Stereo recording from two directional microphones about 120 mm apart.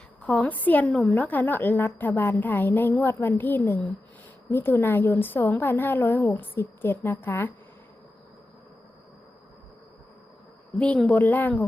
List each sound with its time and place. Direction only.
0.2 s a woman's voice: 10° left (ahead or behind)
10.8 s a woman's voice: 10° left (ahead or behind)